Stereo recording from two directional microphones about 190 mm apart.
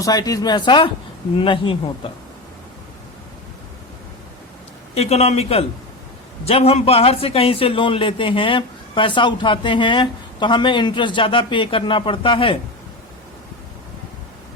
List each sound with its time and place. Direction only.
0.0 s a man's voice: 20° left (ahead or behind)
4.9 s a man's voice: 35° left (ahead or behind)